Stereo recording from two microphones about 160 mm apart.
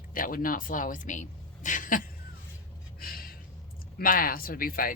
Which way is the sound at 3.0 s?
65° left (ahead or behind).